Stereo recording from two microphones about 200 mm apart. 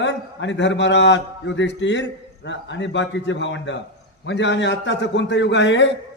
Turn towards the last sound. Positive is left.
turn(degrees=65)  # may be behind; listen again after turning